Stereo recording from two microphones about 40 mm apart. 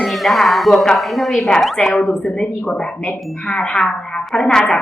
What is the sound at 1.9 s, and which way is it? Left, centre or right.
Speech, left.